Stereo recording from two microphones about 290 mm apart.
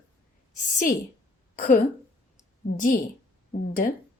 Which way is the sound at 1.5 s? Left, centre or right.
Left.